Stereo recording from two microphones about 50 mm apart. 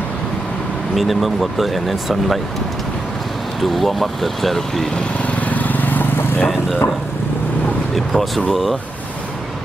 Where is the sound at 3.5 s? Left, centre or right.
Centre.